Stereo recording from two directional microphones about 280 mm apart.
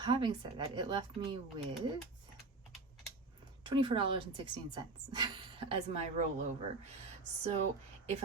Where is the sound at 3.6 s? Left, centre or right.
Centre.